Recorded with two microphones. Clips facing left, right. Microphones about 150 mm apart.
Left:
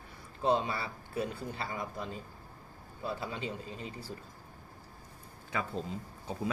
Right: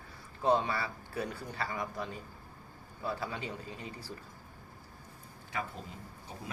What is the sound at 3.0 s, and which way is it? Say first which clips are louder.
Speech: even; 25° left (ahead or behind).